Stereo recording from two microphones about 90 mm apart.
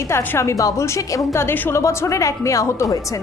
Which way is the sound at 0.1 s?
30° left (ahead or behind).